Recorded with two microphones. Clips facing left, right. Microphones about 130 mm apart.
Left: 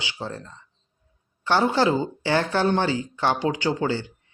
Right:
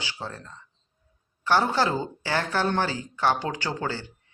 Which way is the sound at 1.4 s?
25° left (ahead or behind).